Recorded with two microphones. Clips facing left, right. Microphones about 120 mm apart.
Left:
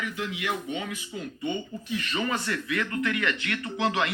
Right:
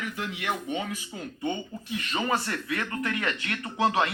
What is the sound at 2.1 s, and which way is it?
Speech, 35° right (ahead or behind).